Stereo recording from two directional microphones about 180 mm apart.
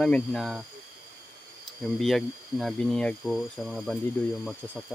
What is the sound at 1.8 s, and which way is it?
Speech, centre (ahead or behind).